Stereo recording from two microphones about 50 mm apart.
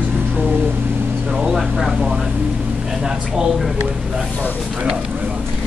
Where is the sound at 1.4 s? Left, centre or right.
Centre.